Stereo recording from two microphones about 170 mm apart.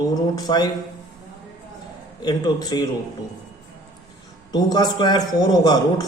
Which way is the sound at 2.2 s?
25° left (ahead or behind).